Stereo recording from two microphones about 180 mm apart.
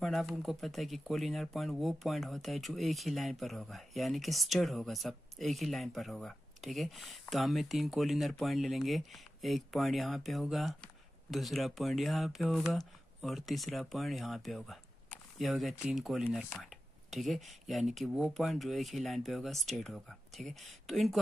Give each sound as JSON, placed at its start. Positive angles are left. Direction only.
{"t": 0.0, "sound": "speech", "side_deg": 0}